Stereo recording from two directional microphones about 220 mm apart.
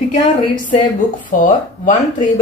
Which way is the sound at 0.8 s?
35° left (ahead or behind).